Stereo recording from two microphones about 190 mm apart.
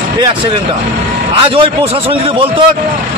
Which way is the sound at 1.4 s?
30° right (ahead or behind).